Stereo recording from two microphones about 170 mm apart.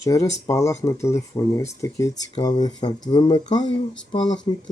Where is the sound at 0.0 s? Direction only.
20° left (ahead or behind).